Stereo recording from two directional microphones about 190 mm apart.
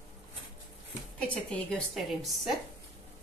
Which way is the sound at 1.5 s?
5° left (ahead or behind).